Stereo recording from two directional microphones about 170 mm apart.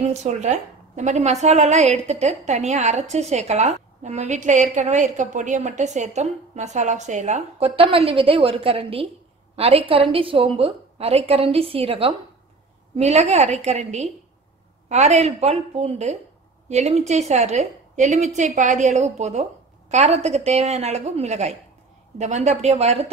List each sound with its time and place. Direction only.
0.1 s a woman's voice: 40° right (ahead or behind)